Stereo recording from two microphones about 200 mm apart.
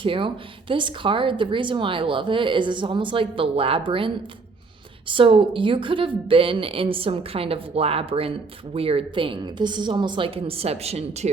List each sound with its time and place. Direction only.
0.0 s a woman's voice: 25° right (ahead or behind)